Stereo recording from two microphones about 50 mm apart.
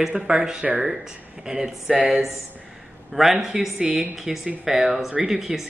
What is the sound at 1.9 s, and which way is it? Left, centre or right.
Speech, right.